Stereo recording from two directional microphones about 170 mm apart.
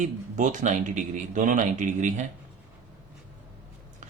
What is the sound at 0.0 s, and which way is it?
Speech, 50° right (ahead or behind).